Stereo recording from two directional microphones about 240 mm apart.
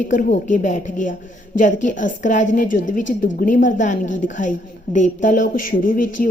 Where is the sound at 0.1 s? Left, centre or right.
Left.